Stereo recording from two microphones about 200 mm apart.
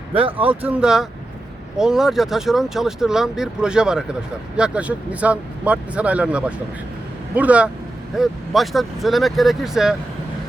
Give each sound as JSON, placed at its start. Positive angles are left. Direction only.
{"t": 0.1, "sound": "speech", "side_deg": -25}
{"t": 0.6, "sound": "speech", "side_deg": -5}